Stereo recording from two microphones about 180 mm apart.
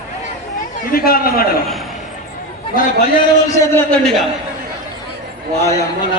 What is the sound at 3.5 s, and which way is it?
Speech, 15° left (ahead or behind).